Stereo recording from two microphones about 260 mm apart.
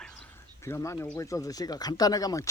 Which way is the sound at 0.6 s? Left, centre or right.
Centre.